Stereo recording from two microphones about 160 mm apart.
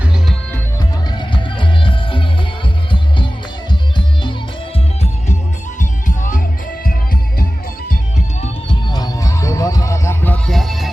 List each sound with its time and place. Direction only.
1.2 s music: 30° left (ahead or behind)
3.7 s music: 30° left (ahead or behind)
5.8 s music: 55° left (ahead or behind)
6.8 s music: 65° left (ahead or behind)
8.9 s music: 25° left (ahead or behind); by 10.8 s centre (ahead or behind)